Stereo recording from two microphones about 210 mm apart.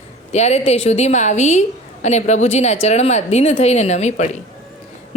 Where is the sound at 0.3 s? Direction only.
30° left (ahead or behind).